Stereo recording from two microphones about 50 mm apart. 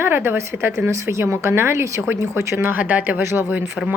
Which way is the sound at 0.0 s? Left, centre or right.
Right.